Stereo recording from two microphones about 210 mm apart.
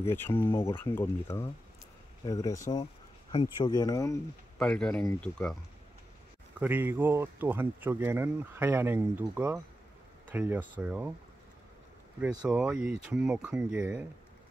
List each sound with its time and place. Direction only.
0.1 s speech: 10° left (ahead or behind)
2.8 s a sound: 25° left (ahead or behind)
3.6 s speech: 20° left (ahead or behind)
4.6 s speech: 5° left (ahead or behind)
6.6 s speech: 10° right (ahead or behind)
12.4 s speech: 5° right (ahead or behind)